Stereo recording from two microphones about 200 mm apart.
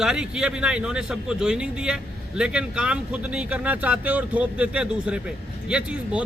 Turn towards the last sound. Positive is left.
turn(degrees=-5)  # may be behind; listen again after turning